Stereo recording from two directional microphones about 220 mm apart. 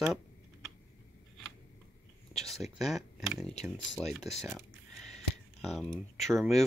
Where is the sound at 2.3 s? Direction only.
Centre (ahead or behind).